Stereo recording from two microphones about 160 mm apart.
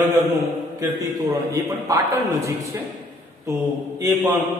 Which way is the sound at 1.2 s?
20° right (ahead or behind).